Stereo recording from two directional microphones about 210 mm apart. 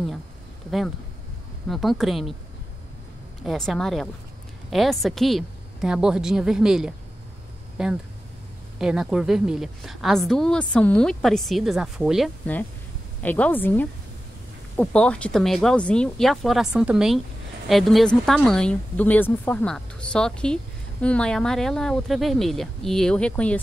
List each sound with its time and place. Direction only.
0.7 s a woman's voice: centre (ahead or behind)
3.4 s a woman's voice: centre (ahead or behind)